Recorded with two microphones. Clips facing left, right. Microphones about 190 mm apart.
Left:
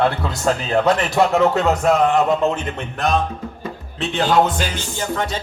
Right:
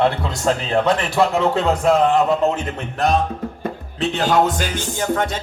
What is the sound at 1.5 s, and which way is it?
Speech, 35° right (ahead or behind).